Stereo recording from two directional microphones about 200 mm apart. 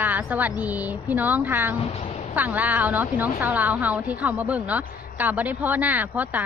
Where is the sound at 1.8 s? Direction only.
30° left (ahead or behind).